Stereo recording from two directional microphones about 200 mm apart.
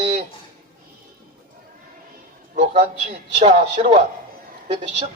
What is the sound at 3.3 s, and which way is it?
Speech, 35° right (ahead or behind).